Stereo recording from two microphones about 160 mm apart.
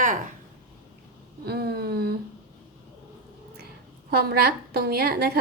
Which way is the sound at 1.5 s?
80° right.